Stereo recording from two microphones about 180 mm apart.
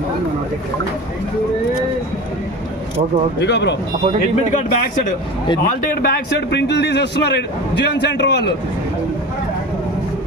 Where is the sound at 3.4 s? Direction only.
70° left (ahead or behind).